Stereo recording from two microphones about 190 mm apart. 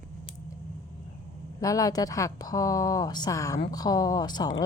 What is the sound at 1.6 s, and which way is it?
A woman's voice, 20° left (ahead or behind).